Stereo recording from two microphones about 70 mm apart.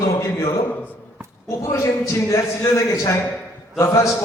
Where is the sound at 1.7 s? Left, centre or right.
Left.